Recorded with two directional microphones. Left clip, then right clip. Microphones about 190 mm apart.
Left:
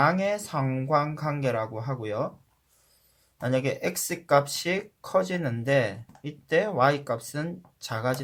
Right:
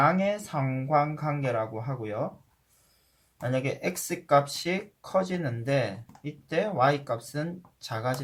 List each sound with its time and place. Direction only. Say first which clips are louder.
0.0 s speech: left 1 dB; 45° left (ahead or behind)
3.4 s speech: left 3 dB; 45° left (ahead or behind)